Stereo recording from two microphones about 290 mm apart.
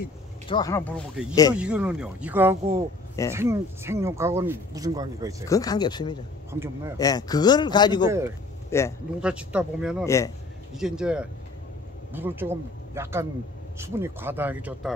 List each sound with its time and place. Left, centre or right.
0.5 s a man's voice: centre
1.5 s speech: centre
5.5 s a man's voice: centre
6.5 s speech: centre
7.0 s a man's voice: centre
9.2 s speech: centre
10.0 s a man's voice: centre
10.7 s speech: centre